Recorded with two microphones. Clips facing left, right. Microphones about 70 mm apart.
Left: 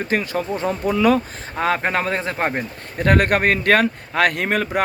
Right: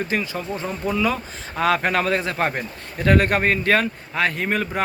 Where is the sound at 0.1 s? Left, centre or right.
Left.